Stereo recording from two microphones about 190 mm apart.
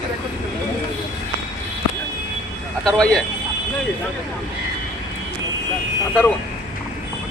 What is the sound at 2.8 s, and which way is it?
Speech, 5° left (ahead or behind).